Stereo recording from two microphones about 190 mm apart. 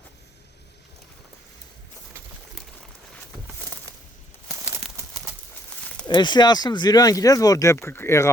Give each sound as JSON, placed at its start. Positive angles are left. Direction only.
{"t": 6.1, "sound": "speech", "side_deg": 25}